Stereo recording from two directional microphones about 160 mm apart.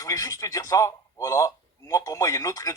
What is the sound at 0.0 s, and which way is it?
Speech, 20° left (ahead or behind).